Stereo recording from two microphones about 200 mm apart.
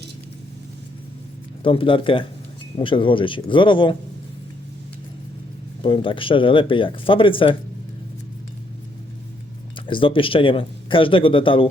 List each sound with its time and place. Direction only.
1.6 s speech: 25° left (ahead or behind)
5.8 s speech: 25° left (ahead or behind)
9.8 s speech: 25° left (ahead or behind)